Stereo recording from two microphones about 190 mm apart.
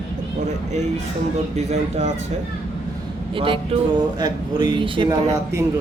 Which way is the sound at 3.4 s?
25° right (ahead or behind).